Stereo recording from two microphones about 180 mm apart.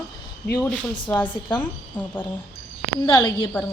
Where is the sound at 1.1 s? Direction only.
10° left (ahead or behind).